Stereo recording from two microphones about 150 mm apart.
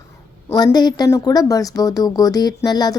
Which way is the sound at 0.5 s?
30° left (ahead or behind).